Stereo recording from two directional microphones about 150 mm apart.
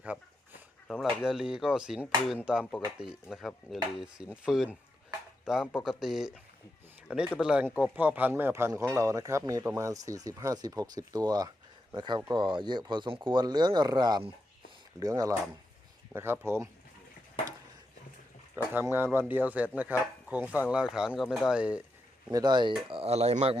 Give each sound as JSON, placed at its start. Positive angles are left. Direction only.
{"t": 0.0, "sound": "a sound", "side_deg": -10}
{"t": 0.9, "sound": "speech", "side_deg": -5}
{"t": 18.5, "sound": "speech", "side_deg": -15}
{"t": 22.3, "sound": "speech", "side_deg": -25}
{"t": 22.9, "sound": "speech", "side_deg": -40}